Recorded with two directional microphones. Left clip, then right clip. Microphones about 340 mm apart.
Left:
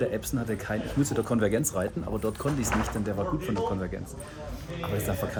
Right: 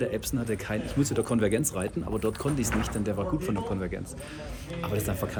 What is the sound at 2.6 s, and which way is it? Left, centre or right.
Speech, left.